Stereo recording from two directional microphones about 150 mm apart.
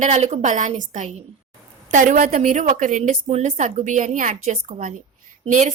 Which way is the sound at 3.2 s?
45° right (ahead or behind).